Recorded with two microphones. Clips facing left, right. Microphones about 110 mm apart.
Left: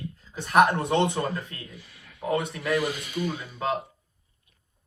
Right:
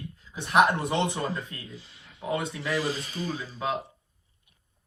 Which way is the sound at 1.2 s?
25° right (ahead or behind).